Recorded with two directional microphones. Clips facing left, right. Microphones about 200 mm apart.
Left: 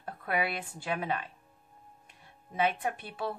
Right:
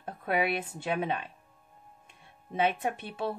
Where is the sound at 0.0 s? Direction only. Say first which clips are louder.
Right 3 dB; 20° right (ahead or behind).